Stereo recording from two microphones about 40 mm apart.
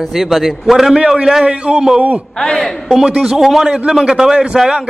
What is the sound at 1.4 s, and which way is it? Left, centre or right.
Speech, right.